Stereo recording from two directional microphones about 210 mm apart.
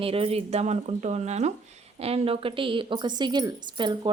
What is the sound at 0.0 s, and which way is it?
A woman's voice, 25° right (ahead or behind).